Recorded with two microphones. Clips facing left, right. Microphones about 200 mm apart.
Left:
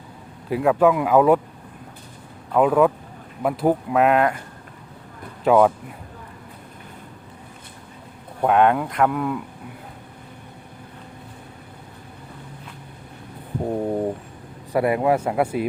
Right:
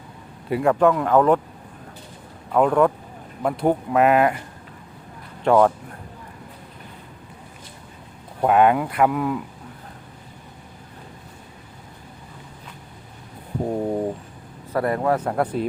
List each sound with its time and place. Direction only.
0.5 s speech: 5° left (ahead or behind)
2.5 s speech: 5° left (ahead or behind)
5.4 s speech: 5° left (ahead or behind)
8.4 s speech: 5° right (ahead or behind)
13.7 s a sound: centre (ahead or behind)
14.7 s speech: 10° left (ahead or behind)